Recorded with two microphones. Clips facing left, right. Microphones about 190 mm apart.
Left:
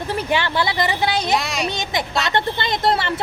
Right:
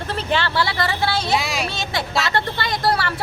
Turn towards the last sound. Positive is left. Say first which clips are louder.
# left 1 dB
turn(degrees=20)  # may be behind; listen again after turning